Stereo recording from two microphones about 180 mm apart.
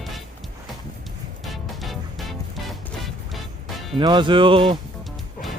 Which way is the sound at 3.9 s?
25° right (ahead or behind).